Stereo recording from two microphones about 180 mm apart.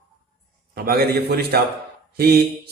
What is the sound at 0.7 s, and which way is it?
Speech, 60° right (ahead or behind).